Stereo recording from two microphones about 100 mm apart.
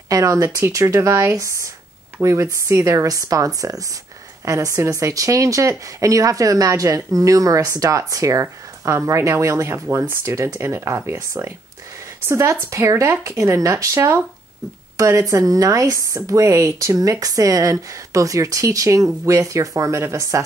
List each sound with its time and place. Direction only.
0.1 s speech: 35° right (ahead or behind)